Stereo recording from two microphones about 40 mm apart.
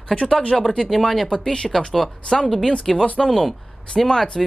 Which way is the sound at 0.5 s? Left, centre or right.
Centre.